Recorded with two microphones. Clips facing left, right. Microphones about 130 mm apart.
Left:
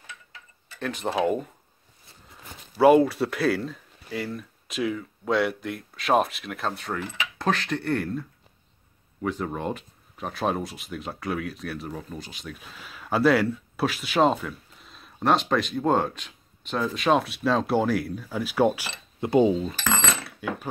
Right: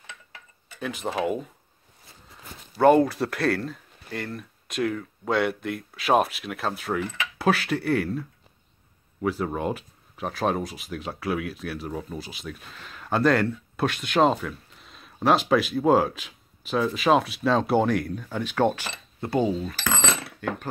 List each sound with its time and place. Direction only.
0.7 s speech: 5° right (ahead or behind)
2.8 s speech: 5° left (ahead or behind)
20.3 s speech: 10° left (ahead or behind)